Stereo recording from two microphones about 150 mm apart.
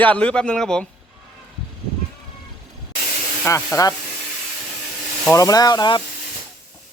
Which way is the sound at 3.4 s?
20° left (ahead or behind).